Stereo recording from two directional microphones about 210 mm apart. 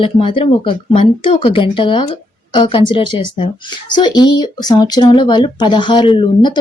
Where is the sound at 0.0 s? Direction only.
25° left (ahead or behind).